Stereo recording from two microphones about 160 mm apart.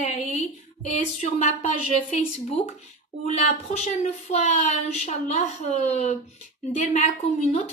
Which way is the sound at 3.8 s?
40° left (ahead or behind).